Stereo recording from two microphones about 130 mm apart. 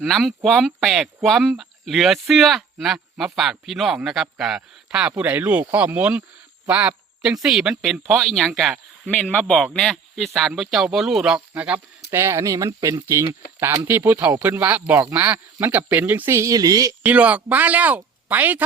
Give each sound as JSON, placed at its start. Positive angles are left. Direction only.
{"t": 0.0, "sound": "speech", "side_deg": 0}
{"t": 17.0, "sound": "speech", "side_deg": -10}